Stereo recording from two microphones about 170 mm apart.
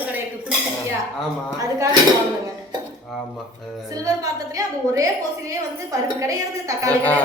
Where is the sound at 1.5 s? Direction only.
20° right (ahead or behind).